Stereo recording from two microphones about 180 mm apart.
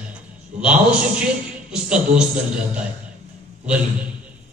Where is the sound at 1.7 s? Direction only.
5° right (ahead or behind).